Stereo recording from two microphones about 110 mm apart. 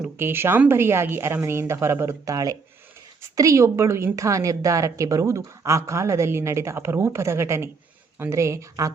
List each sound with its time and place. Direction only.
0.0 s a woman's voice: 20° right (ahead or behind)